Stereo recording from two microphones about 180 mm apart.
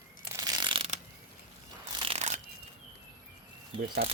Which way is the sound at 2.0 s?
35° right (ahead or behind).